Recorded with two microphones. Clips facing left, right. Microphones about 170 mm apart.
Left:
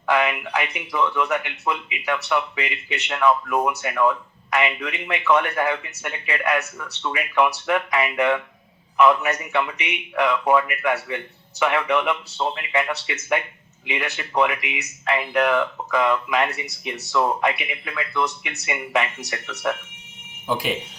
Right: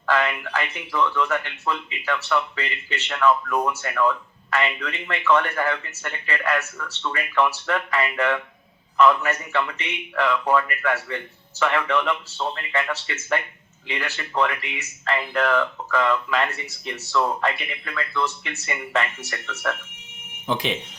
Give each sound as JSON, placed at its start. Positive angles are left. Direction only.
{"t": 0.0, "sound": "speech", "side_deg": 15}